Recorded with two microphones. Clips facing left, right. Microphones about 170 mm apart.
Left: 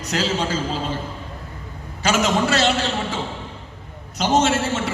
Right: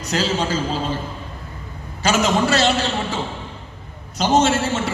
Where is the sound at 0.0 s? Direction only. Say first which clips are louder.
Right 1 dB; 35° right (ahead or behind).